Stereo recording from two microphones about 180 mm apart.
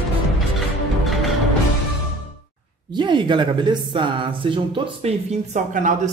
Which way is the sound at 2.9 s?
25° right (ahead or behind).